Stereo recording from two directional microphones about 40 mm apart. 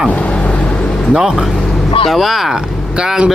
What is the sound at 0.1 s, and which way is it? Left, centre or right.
Vehicle, left.